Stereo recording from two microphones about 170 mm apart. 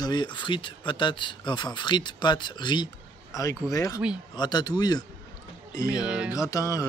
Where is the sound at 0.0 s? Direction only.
25° left (ahead or behind).